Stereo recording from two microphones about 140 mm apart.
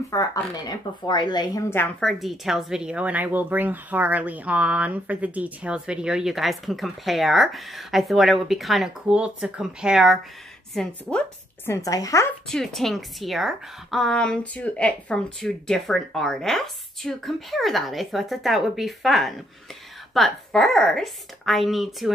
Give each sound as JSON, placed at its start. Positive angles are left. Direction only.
{"t": 0.1, "sound": "a woman's voice", "side_deg": 25}
{"t": 2.0, "sound": "a woman's voice", "side_deg": 0}
{"t": 11.7, "sound": "a woman's voice", "side_deg": 25}
{"t": 12.4, "sound": "speech", "side_deg": 5}